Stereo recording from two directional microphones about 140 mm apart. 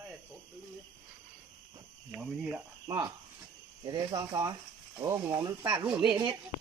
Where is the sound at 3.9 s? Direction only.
30° right (ahead or behind).